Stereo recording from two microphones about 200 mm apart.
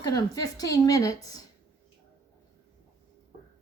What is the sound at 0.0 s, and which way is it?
Speech, 15° left (ahead or behind).